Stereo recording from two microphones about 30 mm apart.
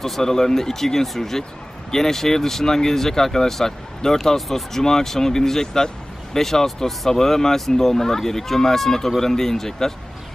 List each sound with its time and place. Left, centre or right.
0.0 s speech: centre
4.4 s speech: centre